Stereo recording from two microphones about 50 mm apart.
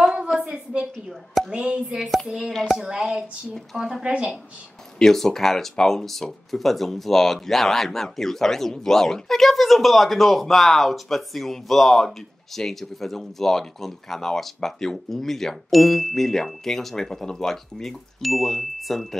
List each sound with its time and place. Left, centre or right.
0.0 s a sound: centre
1.5 s speech: right
2.0 s a woman's voice: centre
4.9 s speech: centre